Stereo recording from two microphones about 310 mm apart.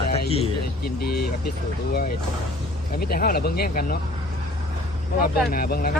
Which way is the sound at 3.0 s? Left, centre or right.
Left.